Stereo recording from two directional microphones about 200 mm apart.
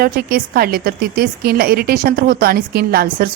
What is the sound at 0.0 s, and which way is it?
A woman's voice, 50° right (ahead or behind).